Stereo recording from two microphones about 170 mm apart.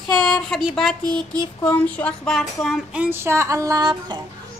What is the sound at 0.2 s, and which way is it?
Speech, centre (ahead or behind).